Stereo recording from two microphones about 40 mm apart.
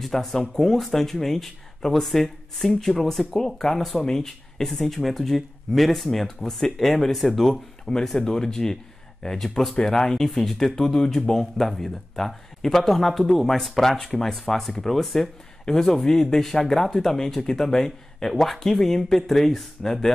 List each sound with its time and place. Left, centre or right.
0.0 s speech: centre